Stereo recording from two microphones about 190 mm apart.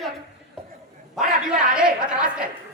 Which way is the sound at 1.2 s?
5° right (ahead or behind).